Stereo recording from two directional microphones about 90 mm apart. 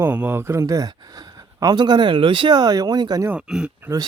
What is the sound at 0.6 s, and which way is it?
Speech, 45° right (ahead or behind).